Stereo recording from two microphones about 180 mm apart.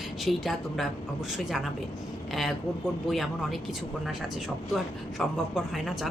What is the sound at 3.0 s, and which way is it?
Speech, centre (ahead or behind).